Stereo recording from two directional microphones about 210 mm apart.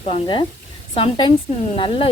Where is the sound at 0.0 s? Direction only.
25° left (ahead or behind).